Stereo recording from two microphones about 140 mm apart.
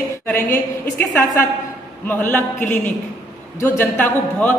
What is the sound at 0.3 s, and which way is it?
A man's voice, 15° left (ahead or behind).